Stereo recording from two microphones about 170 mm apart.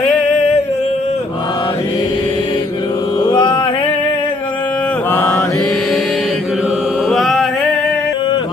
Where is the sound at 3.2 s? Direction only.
25° left (ahead or behind).